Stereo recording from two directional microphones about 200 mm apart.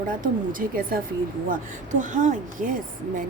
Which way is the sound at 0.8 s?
45° right (ahead or behind).